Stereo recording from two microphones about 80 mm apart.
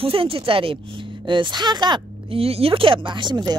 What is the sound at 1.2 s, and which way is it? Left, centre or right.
Speech, right.